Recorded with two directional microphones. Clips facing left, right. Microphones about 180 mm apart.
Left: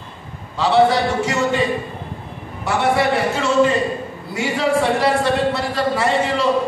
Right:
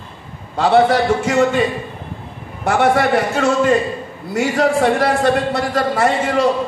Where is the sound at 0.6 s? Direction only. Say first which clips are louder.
Right 2 dB; 50° right (ahead or behind).